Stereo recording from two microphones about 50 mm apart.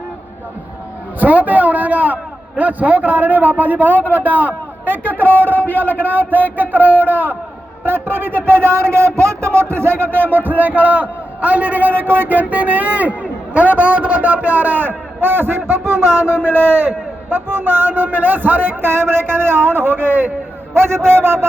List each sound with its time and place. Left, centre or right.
1.2 s a sound: right
2.6 s a man's voice: right
10.3 s a man's voice: right
20.7 s a man's voice: right